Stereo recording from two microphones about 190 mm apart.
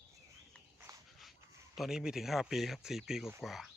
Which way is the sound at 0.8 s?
15° right (ahead or behind).